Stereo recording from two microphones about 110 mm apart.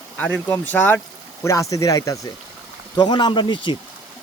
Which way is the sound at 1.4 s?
30° left (ahead or behind).